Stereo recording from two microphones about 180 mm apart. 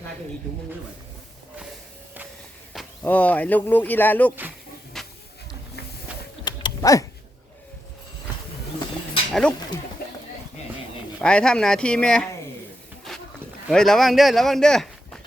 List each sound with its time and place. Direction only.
2.7 s speech: 10° left (ahead or behind)
4.9 s hiss: centre (ahead or behind)
6.4 s typing: 25° left (ahead or behind)
9.3 s speech: 5° left (ahead or behind)
11.2 s speech: 5° left (ahead or behind)
13.7 s speech: centre (ahead or behind)